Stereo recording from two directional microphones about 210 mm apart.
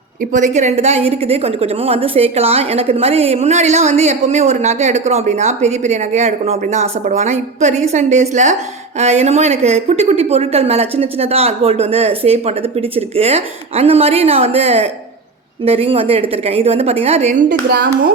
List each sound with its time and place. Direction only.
0.3 s a woman's voice: 35° right (ahead or behind)